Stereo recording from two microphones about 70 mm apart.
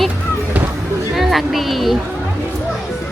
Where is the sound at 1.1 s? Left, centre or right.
Centre.